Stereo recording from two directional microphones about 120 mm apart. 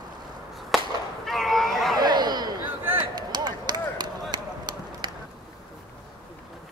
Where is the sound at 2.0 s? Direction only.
35° right (ahead or behind).